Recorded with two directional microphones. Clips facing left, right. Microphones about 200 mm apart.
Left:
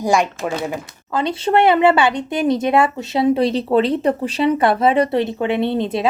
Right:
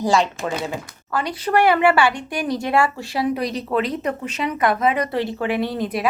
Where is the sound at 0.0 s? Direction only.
15° left (ahead or behind).